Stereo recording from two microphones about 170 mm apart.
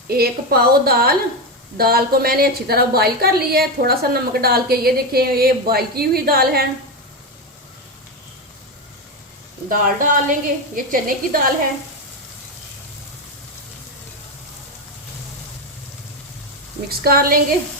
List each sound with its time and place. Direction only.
0.1 s a woman's voice: 65° right (ahead or behind)
9.6 s a woman's voice: 50° right (ahead or behind)
16.9 s a woman's voice: 65° right (ahead or behind)